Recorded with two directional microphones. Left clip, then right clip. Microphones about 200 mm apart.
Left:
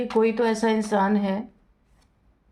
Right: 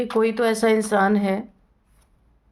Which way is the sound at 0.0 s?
45° right (ahead or behind).